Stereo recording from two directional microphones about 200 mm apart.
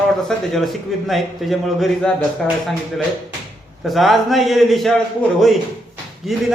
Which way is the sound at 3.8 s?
Centre (ahead or behind).